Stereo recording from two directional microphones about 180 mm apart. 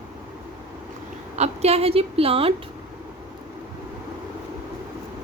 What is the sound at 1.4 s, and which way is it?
Speech, 35° right (ahead or behind).